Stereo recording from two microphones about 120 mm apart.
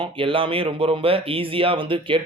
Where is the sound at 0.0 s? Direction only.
45° right (ahead or behind).